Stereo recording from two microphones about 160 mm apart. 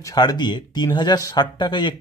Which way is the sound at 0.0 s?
25° left (ahead or behind).